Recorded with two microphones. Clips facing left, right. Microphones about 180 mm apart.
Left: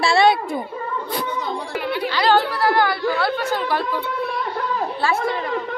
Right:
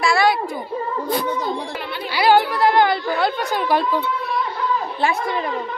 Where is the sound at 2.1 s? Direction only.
15° right (ahead or behind).